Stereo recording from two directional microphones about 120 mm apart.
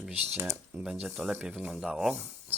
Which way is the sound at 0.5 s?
10° right (ahead or behind).